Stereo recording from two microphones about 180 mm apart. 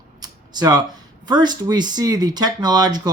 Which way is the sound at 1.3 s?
25° right (ahead or behind).